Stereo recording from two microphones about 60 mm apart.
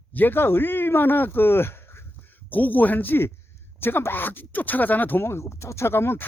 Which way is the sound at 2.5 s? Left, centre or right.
Left.